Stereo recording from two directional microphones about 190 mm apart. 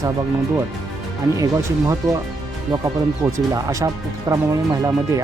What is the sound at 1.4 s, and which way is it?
Speech, 15° right (ahead or behind).